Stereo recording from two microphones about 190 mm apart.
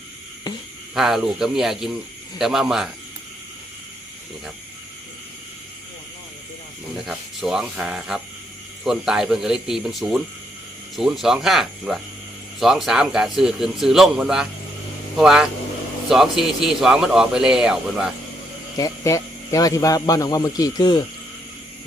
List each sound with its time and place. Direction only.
0.9 s a man's voice: centre (ahead or behind)
6.9 s a man's voice: centre (ahead or behind)
18.8 s speech: 15° left (ahead or behind)